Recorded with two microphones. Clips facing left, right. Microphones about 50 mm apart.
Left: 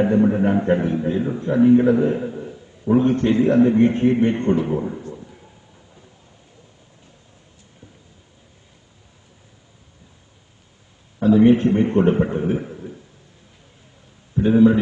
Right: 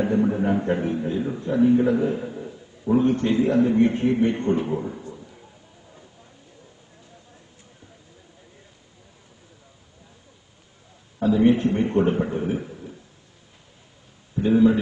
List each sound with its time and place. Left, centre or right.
0.0 s a man's voice: left
1.4 s a man's voice: left
2.2 s a sound: centre
2.9 s a man's voice: left
4.7 s a man's voice: centre
11.2 s a man's voice: left